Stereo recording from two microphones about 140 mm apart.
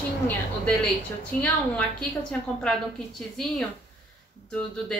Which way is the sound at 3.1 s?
Centre (ahead or behind).